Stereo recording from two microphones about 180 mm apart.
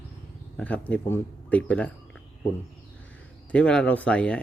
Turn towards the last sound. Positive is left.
turn(degrees=5)  # may be behind; listen again after turning